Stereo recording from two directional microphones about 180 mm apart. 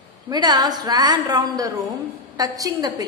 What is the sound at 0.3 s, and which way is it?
A woman's voice, 25° right (ahead or behind).